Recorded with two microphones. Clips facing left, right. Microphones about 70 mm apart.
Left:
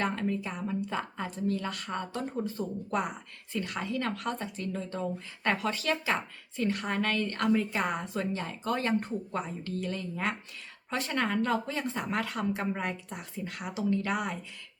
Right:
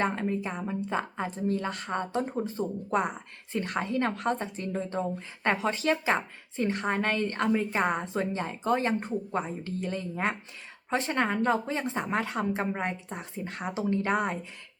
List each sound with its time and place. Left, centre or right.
0.0 s a woman's voice: right